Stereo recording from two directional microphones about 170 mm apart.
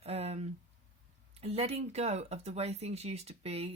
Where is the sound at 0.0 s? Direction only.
35° right (ahead or behind).